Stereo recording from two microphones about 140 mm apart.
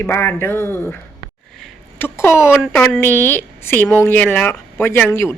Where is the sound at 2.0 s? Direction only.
15° left (ahead or behind).